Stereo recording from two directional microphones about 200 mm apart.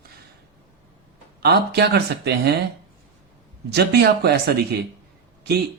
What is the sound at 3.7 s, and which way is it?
Speech, 55° right (ahead or behind).